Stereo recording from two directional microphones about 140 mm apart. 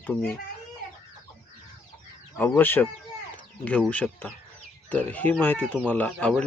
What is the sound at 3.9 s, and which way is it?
Speech, 10° left (ahead or behind).